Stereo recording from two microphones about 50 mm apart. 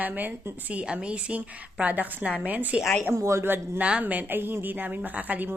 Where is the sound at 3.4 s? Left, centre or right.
Right.